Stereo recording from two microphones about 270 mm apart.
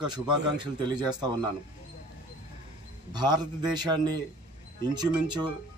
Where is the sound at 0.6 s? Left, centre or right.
Centre.